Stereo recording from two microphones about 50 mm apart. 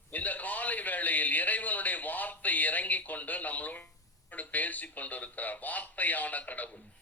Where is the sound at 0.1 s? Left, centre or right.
Left.